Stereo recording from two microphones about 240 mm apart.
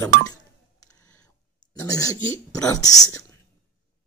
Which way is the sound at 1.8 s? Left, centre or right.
Centre.